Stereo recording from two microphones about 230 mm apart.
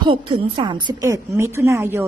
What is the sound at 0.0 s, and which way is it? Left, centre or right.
A woman's voice, right.